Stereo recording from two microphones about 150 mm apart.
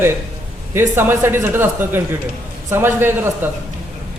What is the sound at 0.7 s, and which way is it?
A man's voice, 15° right (ahead or behind).